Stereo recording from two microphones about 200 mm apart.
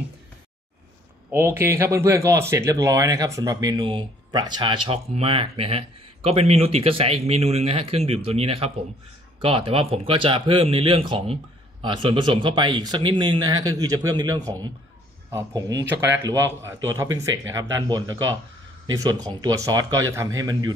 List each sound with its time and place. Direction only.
1.3 s speech: 10° right (ahead or behind)